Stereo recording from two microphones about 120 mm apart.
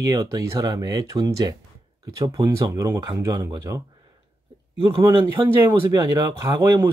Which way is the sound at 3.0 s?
35° right (ahead or behind).